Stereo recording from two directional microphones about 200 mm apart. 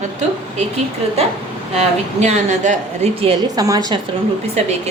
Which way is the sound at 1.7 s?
30° right (ahead or behind).